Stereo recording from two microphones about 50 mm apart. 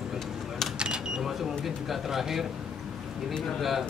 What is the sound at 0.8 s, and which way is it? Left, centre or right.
Speech, centre.